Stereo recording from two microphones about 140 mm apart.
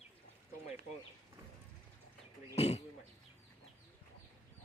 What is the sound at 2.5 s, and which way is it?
Speech, 50° left (ahead or behind).